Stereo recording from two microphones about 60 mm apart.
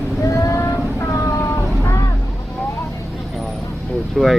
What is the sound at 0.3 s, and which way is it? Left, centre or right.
Vehicle, left.